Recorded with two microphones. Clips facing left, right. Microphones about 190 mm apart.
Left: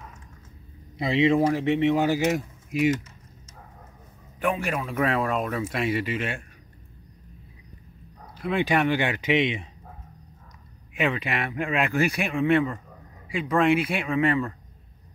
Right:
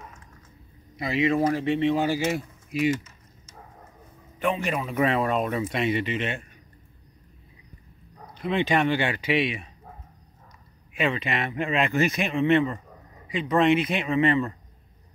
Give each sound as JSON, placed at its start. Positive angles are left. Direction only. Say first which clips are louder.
{"t": 0.9, "sound": "speech", "louder": "left 3 dB", "side_deg": 25}
{"t": 1.4, "sound": "a man's voice", "louder": "left 1 dB", "side_deg": 15}
{"t": 4.4, "sound": "a man's voice", "louder": "even", "side_deg": 10}
{"t": 8.4, "sound": "a man's voice", "louder": "even", "side_deg": 5}
{"t": 10.9, "sound": "a man's voice", "louder": "even", "side_deg": 15}